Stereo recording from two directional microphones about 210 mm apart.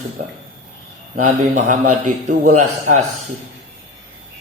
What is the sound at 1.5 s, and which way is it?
Mantra, 35° right (ahead or behind).